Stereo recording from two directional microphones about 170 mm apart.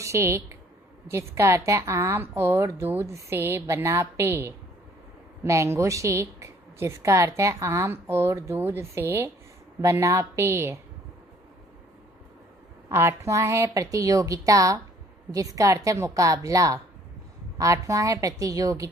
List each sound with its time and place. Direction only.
0.0 s a woman's voice: 15° right (ahead or behind)
12.9 s a woman's voice: 15° right (ahead or behind)